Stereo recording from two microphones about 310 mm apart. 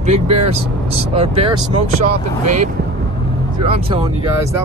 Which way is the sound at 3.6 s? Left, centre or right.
Centre.